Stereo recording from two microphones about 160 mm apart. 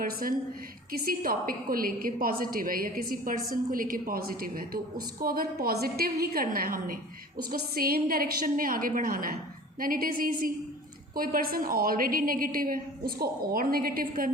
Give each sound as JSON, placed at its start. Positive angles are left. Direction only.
{"t": 0.0, "sound": "a woman's voice", "side_deg": -65}